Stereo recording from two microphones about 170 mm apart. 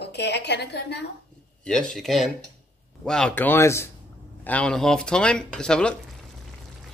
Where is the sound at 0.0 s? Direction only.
80° left.